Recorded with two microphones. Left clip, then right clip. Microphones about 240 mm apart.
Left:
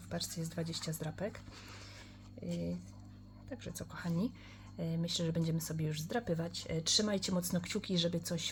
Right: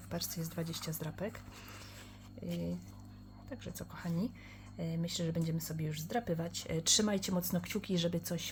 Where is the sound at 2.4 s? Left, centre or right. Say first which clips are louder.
Even; centre.